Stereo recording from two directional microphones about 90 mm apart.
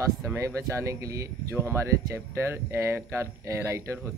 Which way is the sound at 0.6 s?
35° right (ahead or behind).